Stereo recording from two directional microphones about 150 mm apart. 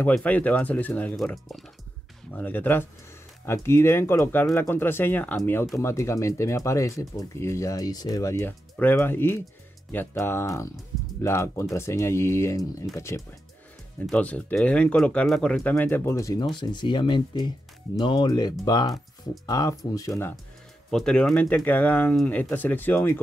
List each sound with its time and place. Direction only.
0.0 s speech: 10° left (ahead or behind)
2.3 s speech: 10° left (ahead or behind)
14.0 s speech: 10° left (ahead or behind)
15.7 s speech: 15° left (ahead or behind)
20.9 s speech: 5° left (ahead or behind)